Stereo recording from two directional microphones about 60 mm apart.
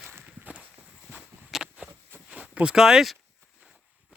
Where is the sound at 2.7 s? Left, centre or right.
Centre.